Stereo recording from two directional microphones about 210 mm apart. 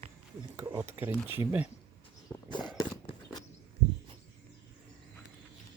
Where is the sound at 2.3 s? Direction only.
20° left (ahead or behind).